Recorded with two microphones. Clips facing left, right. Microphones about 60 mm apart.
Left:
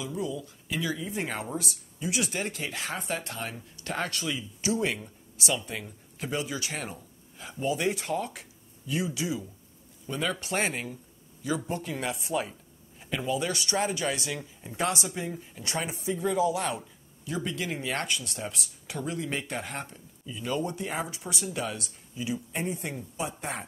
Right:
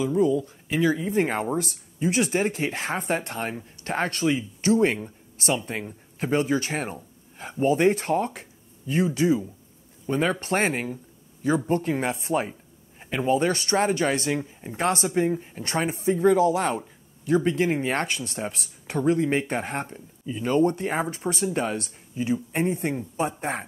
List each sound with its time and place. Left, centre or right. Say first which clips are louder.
0.0 s speech: right 11 dB; right
14.4 s speech: right 7 dB; right
14.8 s speech: right 7 dB; right